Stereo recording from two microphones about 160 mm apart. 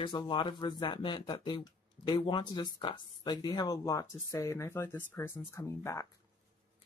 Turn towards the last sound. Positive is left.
turn(degrees=15)  # may be behind; listen again after turning